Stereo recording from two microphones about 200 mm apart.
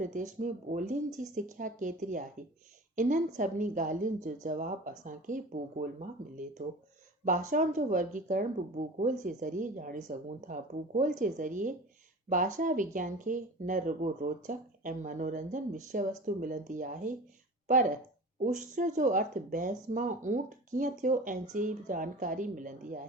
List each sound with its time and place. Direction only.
0.0 s speech: 40° right (ahead or behind)
18.4 s speech: 35° right (ahead or behind)